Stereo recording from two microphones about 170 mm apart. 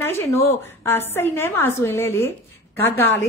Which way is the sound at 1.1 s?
15° left (ahead or behind).